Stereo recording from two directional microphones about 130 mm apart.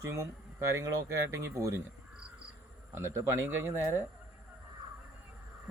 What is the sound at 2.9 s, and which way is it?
Speech, 20° right (ahead or behind).